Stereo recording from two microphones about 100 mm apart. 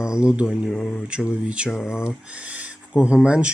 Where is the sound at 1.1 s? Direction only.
10° right (ahead or behind).